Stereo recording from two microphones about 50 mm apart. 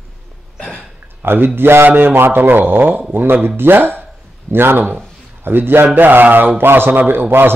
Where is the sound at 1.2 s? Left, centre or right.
Right.